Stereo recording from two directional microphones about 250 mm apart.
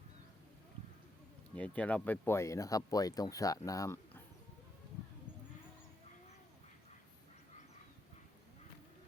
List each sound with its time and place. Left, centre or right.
1.5 s speech: centre